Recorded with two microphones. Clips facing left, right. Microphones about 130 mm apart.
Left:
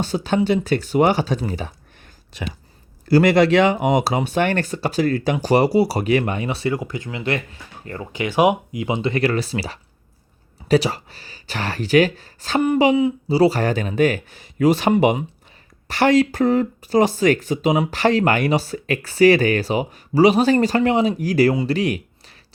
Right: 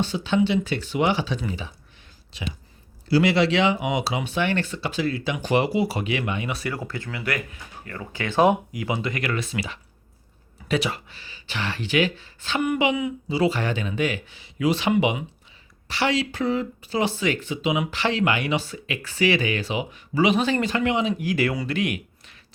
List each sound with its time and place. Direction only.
0.0 s speech: 40° left (ahead or behind)
3.1 s speech: 50° left (ahead or behind); by 6.7 s 30° left (ahead or behind)
6.7 s speech: 15° left (ahead or behind)
8.1 s speech: 15° left (ahead or behind); by 22.4 s 35° left (ahead or behind)